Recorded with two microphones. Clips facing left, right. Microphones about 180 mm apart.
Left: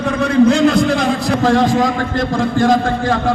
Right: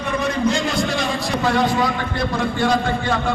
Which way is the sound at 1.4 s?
45° left (ahead or behind).